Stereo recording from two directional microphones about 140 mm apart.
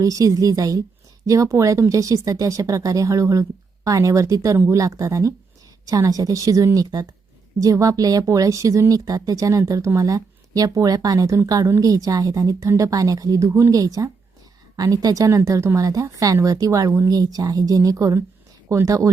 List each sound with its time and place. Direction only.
0.0 s a woman's voice: 25° right (ahead or behind)